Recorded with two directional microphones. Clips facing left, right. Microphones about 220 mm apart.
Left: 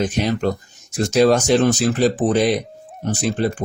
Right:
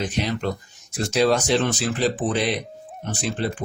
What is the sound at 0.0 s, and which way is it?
Speech, 45° left (ahead or behind).